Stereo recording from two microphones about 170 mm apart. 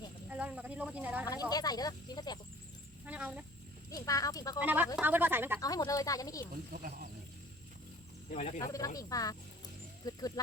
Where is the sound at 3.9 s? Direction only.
20° left (ahead or behind).